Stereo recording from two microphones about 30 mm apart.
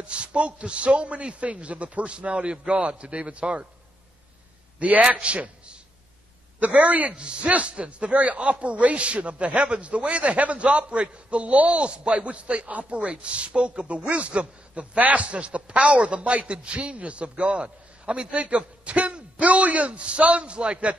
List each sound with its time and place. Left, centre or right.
0.0 s a man's voice: right
4.7 s a man's voice: right
5.2 s a man's voice: right
7.1 s speech: right
11.8 s speech: right
15.1 s speech: right
18.3 s speech: right
19.9 s a man's voice: right